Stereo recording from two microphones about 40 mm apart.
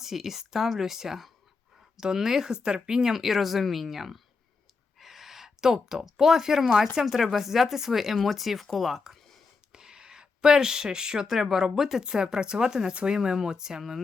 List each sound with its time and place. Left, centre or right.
0.0 s speech: centre
4.9 s gasp: centre
6.0 s speech: centre
9.7 s speech: centre
12.9 s speech: right
13.1 s speech: centre